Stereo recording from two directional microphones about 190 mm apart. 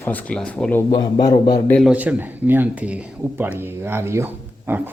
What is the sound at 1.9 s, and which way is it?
Speech, 10° right (ahead or behind).